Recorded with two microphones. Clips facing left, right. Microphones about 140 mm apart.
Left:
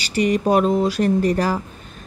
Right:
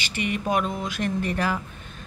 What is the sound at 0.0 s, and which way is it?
A woman's voice, 40° left (ahead or behind).